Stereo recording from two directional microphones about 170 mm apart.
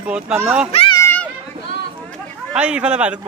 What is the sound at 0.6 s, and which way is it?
Children playing, 35° left (ahead or behind).